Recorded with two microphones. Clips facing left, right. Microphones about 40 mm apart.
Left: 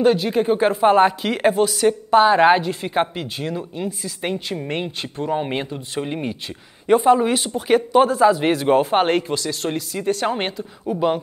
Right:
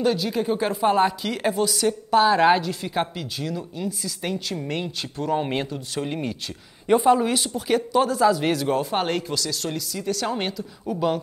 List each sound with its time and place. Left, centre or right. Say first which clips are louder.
0.0 s speech: left 6 dB; left
5.3 s speech: left 1 dB; centre